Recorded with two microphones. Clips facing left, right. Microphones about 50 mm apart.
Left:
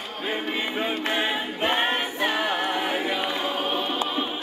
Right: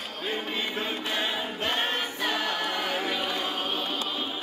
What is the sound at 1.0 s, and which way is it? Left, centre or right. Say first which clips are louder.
Choir: left 4 dB; left.